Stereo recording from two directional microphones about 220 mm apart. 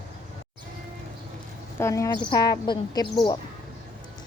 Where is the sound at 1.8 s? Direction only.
15° left (ahead or behind).